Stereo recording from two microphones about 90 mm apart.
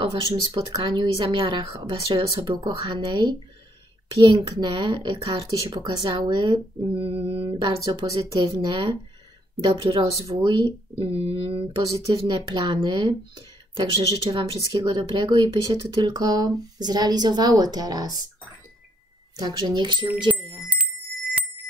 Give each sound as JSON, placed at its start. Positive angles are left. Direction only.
{"t": 0.5, "sound": "speech", "side_deg": -55}
{"t": 2.8, "sound": "speech", "side_deg": -60}
{"t": 9.9, "sound": "speech", "side_deg": -50}
{"t": 12.1, "sound": "speech", "side_deg": -60}
{"t": 15.8, "sound": "speech", "side_deg": -45}
{"t": 19.3, "sound": "speech", "side_deg": -50}
{"t": 20.6, "sound": "bicycle bell", "side_deg": -15}